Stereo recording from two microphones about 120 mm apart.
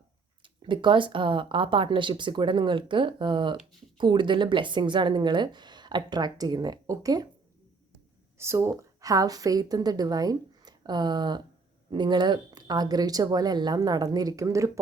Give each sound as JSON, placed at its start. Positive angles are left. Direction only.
{"t": 0.4, "sound": "speech", "side_deg": -45}
{"t": 8.4, "sound": "a woman's voice", "side_deg": -20}